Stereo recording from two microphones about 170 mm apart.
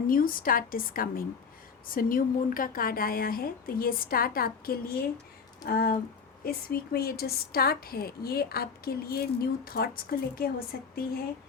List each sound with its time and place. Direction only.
0.1 s a woman's voice: 55° left (ahead or behind)